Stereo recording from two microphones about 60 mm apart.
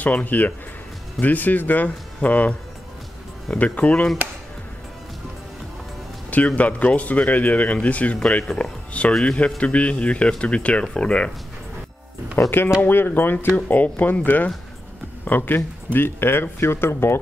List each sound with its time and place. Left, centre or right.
0.0 s speech: left
3.5 s speech: left
6.3 s speech: left
12.4 s speech: left